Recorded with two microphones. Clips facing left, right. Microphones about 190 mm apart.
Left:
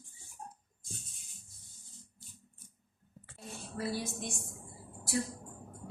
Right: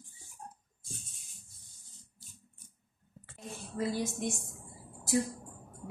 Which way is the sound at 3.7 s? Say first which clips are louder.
Right 4 dB; 20° right (ahead or behind).